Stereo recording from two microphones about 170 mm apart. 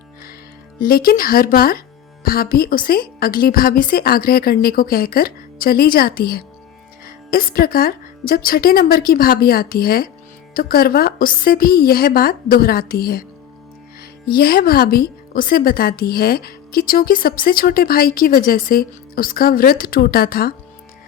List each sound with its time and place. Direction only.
0.9 s a woman's voice: 60° left (ahead or behind)
14.3 s a woman's voice: 65° left (ahead or behind)